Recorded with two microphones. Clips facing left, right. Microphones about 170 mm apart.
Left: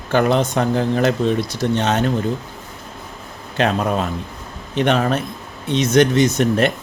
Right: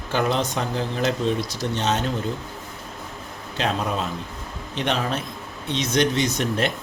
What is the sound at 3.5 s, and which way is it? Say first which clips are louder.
Speech: left 6 dB; 55° left (ahead or behind).